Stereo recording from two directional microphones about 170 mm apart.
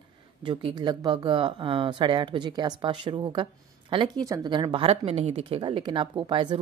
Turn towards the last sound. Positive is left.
turn(degrees=-30)  # may be behind; listen again after turning